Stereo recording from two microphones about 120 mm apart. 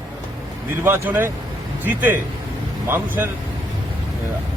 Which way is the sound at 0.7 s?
20° right (ahead or behind).